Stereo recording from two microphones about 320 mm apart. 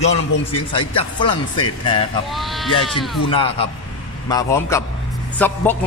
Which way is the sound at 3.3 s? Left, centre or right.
Centre.